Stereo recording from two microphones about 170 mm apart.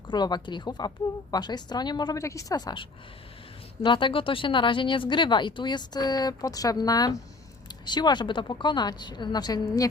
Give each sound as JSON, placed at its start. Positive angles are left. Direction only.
{"t": 0.1, "sound": "speech", "side_deg": 25}
{"t": 3.8, "sound": "speech", "side_deg": 30}